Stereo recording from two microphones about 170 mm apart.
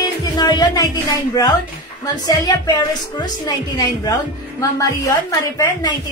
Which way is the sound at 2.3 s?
20° left (ahead or behind).